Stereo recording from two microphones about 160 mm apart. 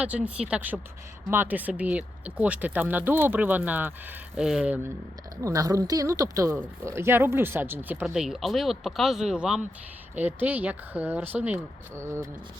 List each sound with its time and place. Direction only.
0.0 s speech: 5° right (ahead or behind)
5.4 s speech: 20° right (ahead or behind)